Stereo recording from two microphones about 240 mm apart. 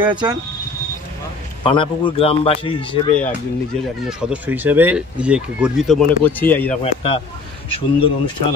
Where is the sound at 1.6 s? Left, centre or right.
Left.